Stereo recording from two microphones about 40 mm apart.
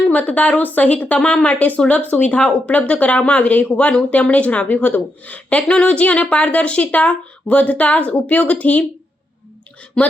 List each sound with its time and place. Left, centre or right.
0.1 s speech: left
1.2 s speech: left
1.5 s speech: left
10.0 s speech: centre